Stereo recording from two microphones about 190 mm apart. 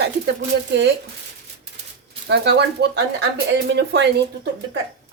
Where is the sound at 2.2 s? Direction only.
65° right (ahead or behind).